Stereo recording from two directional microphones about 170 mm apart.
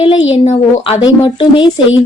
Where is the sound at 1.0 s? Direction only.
30° left (ahead or behind).